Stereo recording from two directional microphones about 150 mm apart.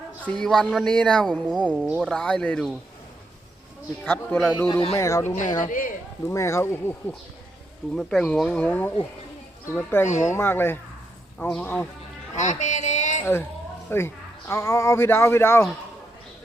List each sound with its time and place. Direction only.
0.3 s speech: 5° left (ahead or behind)
1.7 s speech: 10° right (ahead or behind)
2.0 s speech: 5° left (ahead or behind)
4.0 s speech: 10° left (ahead or behind)
4.7 s speech: 35° left (ahead or behind)
4.9 s speech: 20° left (ahead or behind)
5.6 s speech: 65° left (ahead or behind)
6.2 s speech: 20° left (ahead or behind)
7.9 s speech: 5° left (ahead or behind)
10.1 s speech: 50° left (ahead or behind)
10.3 s speech: 15° left (ahead or behind)
12.4 s a sound: 55° left (ahead or behind)
13.9 s speech: 15° left (ahead or behind)